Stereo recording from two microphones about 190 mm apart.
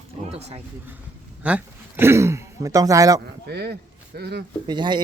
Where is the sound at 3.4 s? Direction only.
60° right (ahead or behind).